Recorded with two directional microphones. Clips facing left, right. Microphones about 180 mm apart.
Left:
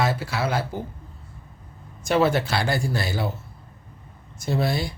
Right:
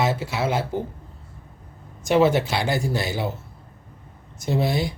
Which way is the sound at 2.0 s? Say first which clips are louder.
Right 2 dB; 20° right (ahead or behind).